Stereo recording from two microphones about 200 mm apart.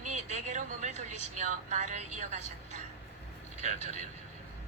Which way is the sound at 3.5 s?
35° right (ahead or behind).